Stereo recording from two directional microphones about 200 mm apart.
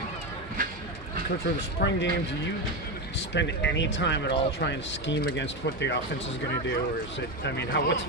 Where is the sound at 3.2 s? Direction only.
60° left (ahead or behind).